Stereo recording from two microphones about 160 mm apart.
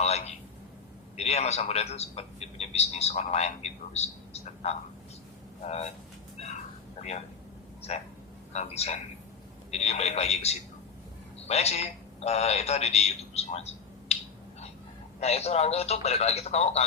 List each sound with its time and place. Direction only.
0.0 s telephone: 40° left (ahead or behind)
1.1 s a man's voice: 40° left (ahead or behind)
7.8 s a man's voice: 40° left (ahead or behind)
15.2 s a man's voice: 40° left (ahead or behind)